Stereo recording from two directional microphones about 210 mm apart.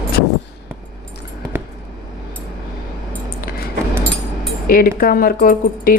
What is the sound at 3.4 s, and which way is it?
Keys jangling, 45° left (ahead or behind).